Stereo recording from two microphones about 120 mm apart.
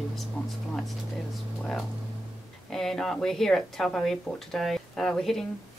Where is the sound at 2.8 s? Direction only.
5° left (ahead or behind).